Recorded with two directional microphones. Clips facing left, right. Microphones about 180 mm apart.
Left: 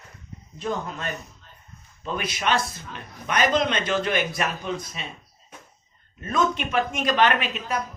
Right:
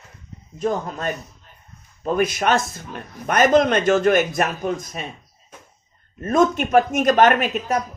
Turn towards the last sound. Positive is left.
turn(degrees=-45)  # may be behind; listen again after turning